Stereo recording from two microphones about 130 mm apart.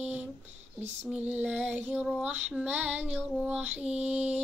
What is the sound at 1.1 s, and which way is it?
Child singing, 10° right (ahead or behind).